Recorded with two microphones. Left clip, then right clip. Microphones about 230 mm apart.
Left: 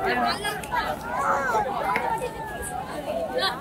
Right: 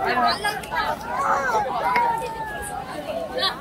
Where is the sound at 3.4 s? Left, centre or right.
Centre.